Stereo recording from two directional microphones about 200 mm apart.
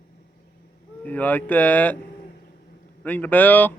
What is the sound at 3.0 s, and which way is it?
Speech, 10° left (ahead or behind).